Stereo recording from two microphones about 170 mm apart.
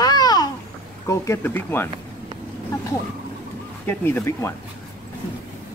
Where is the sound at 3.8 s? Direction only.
10° left (ahead or behind).